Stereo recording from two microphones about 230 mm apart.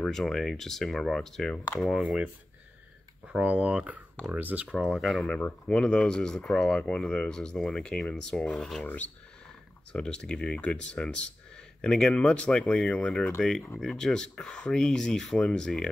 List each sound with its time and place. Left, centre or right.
0.0 s speech: centre
3.3 s speech: centre